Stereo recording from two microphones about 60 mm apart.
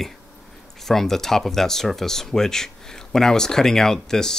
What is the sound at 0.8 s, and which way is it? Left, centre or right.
Speech, centre.